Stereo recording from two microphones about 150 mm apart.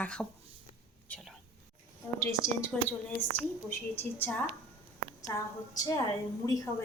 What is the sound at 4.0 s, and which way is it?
A woman's voice, 15° left (ahead or behind).